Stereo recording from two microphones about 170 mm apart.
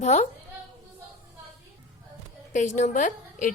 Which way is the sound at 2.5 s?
45° left (ahead or behind).